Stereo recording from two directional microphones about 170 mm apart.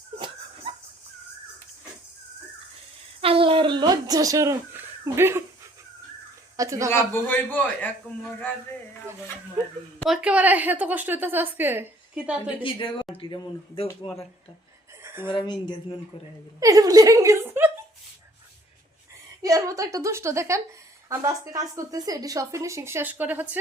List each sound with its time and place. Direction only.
3.2 s speech: 35° right (ahead or behind); by 5.4 s 15° right (ahead or behind)
6.6 s a woman's voice: 20° right (ahead or behind)
6.9 s a man's voice: 10° left (ahead or behind)
10.1 s speech: 5° right (ahead or behind)
12.6 s speech: 30° left (ahead or behind)
15.0 s a sound: 15° right (ahead or behind)
15.3 s speech: 25° left (ahead or behind)
16.6 s a woman's voice: 20° right (ahead or behind)
19.4 s speech: 20° right (ahead or behind)